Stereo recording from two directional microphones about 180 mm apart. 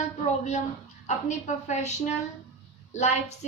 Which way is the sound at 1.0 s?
40° left (ahead or behind).